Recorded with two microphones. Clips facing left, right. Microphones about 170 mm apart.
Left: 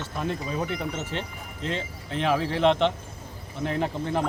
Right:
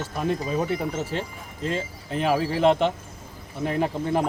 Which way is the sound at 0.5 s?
30° right (ahead or behind).